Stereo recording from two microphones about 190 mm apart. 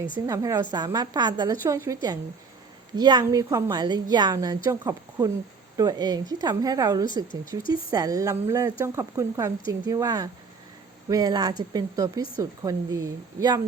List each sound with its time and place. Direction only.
0.1 s a woman's voice: 15° right (ahead or behind)